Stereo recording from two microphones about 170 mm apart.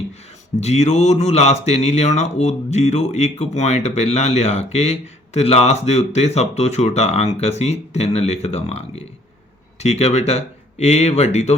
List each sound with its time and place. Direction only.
0.6 s speech: 40° left (ahead or behind)